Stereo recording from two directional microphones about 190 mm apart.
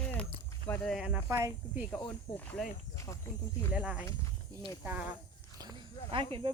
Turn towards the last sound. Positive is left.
turn(degrees=-25)  # may be behind; listen again after turning